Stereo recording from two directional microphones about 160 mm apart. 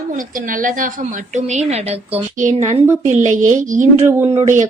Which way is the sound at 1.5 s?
45° right (ahead or behind).